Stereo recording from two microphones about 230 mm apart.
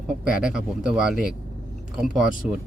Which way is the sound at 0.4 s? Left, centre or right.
Centre.